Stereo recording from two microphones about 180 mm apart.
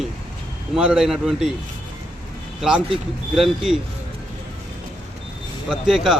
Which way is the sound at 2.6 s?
5° right (ahead or behind).